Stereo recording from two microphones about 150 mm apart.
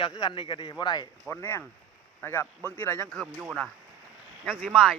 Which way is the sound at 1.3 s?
15° left (ahead or behind).